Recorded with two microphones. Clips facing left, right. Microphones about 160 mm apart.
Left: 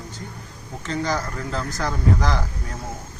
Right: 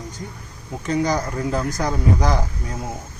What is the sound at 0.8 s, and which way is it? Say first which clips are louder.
A man's voice: right 4 dB; 15° right (ahead or behind).